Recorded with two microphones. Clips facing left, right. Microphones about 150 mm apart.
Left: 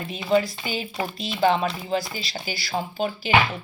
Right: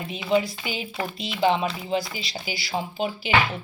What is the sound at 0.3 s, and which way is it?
Speech, 15° right (ahead or behind).